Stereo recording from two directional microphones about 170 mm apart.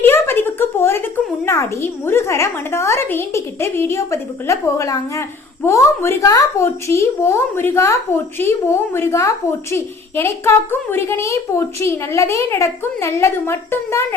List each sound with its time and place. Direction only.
0.0 s a child's voice: 10° left (ahead or behind)